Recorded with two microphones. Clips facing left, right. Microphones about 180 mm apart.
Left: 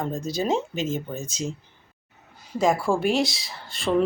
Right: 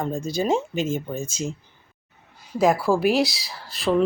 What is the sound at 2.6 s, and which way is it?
Speech, 5° right (ahead or behind).